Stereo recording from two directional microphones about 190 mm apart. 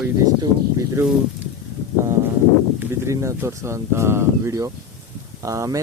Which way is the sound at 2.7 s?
15° right (ahead or behind).